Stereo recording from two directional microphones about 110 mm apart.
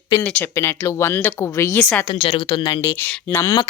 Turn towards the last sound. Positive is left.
turn(degrees=20)  # may be behind; listen again after turning